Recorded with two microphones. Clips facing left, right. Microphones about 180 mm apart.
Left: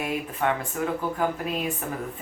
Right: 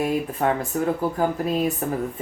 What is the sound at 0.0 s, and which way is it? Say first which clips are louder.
Speech: right 5 dB; 35° right (ahead or behind).